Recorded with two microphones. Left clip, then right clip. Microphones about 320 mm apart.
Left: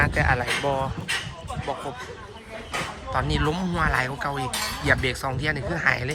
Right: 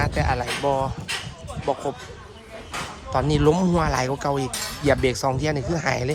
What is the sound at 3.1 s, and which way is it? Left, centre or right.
A man's voice, centre.